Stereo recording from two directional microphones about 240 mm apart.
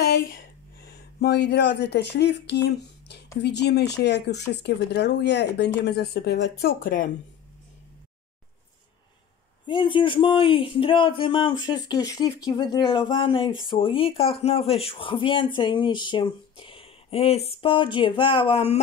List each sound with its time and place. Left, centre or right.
0.0 s a sound: left
3.4 s speech: left
9.7 s speech: left